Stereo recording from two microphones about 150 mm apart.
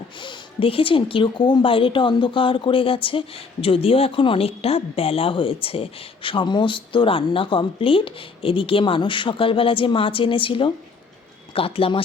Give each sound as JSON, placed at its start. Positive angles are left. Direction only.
{"t": 0.2, "sound": "speech", "side_deg": 35}